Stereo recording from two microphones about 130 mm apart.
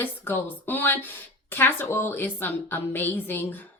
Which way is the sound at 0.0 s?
15° left (ahead or behind).